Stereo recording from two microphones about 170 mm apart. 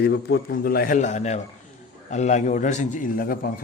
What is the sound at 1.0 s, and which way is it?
A man's voice, 40° left (ahead or behind).